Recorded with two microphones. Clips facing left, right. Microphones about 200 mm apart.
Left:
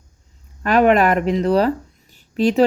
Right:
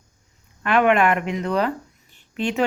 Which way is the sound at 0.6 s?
35° left (ahead or behind).